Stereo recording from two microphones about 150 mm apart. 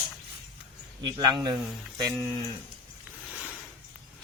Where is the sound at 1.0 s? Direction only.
30° right (ahead or behind).